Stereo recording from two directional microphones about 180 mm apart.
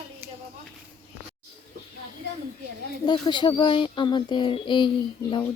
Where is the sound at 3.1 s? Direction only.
25° left (ahead or behind).